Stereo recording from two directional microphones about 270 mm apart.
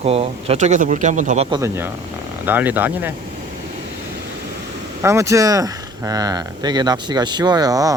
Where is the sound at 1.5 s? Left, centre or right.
Centre.